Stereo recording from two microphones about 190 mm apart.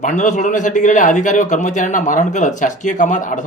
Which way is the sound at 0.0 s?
40° left (ahead or behind).